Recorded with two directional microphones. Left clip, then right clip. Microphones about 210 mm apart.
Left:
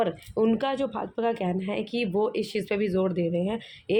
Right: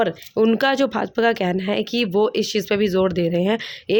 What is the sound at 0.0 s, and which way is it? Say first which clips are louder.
Speech: right 6 dB; 35° right (ahead or behind).